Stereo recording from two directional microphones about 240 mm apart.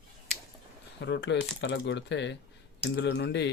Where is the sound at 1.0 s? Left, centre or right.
Left.